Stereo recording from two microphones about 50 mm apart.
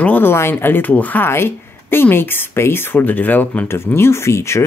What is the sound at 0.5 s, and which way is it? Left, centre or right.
Speech, left.